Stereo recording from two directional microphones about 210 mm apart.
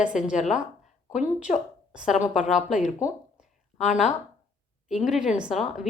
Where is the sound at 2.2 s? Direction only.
35° left (ahead or behind).